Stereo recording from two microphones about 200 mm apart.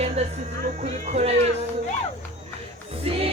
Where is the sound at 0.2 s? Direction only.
35° right (ahead or behind).